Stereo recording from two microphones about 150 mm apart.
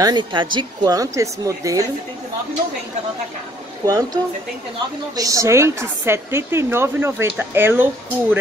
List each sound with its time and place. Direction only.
0.0 s speech: 30° right (ahead or behind)
3.8 s a woman's voice: 25° right (ahead or behind)